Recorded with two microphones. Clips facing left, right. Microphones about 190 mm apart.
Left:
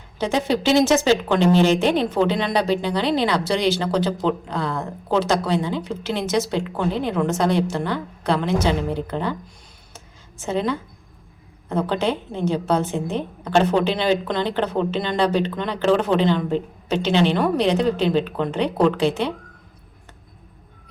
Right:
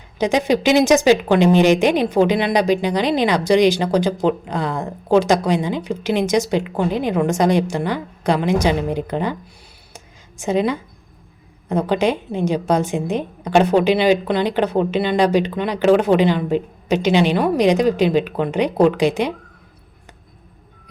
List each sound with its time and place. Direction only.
0.2 s a woman's voice: 15° right (ahead or behind)
9.9 s a sound: 15° right (ahead or behind)
11.7 s a woman's voice: 15° right (ahead or behind)